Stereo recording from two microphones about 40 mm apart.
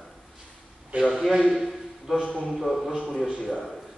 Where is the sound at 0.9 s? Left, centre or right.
Right.